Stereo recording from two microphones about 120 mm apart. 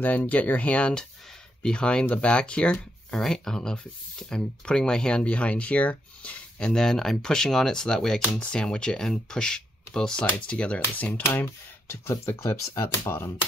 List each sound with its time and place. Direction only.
0.0 s speech: 15° left (ahead or behind)